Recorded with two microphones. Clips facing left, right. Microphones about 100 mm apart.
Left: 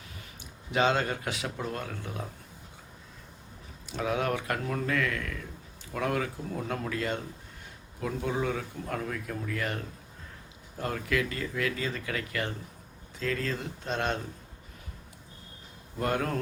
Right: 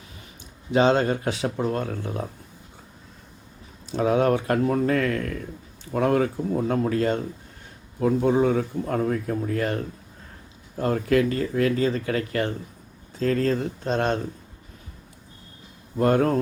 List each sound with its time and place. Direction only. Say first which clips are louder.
0.7 s speech: right 7 dB; 30° right (ahead or behind)
3.9 s speech: right 9 dB; 35° right (ahead or behind)
16.0 s speech: right 10 dB; 35° right (ahead or behind)